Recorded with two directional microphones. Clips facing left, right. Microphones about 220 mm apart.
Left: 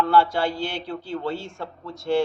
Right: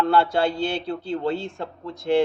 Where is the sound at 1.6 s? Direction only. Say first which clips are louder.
Right 2 dB; 15° right (ahead or behind).